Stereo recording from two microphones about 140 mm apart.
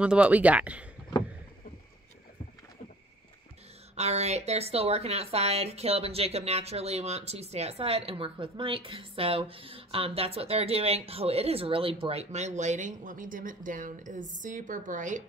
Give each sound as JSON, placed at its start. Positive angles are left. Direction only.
{"t": 0.0, "sound": "speech", "side_deg": -10}
{"t": 3.9, "sound": "speech", "side_deg": -50}